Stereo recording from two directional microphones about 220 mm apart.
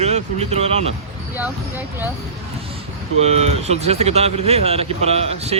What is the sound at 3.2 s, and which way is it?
Speech, 30° right (ahead or behind).